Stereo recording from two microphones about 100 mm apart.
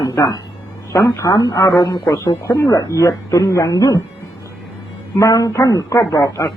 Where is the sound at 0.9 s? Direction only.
30° left (ahead or behind).